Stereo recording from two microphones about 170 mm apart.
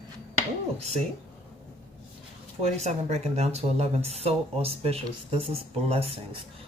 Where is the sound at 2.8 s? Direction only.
40° right (ahead or behind).